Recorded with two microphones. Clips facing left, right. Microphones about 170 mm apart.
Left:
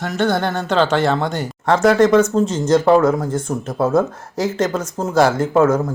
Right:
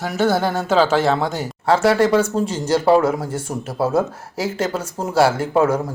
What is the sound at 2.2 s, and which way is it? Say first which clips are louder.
Speech: left 4 dB; 10° right (ahead or behind).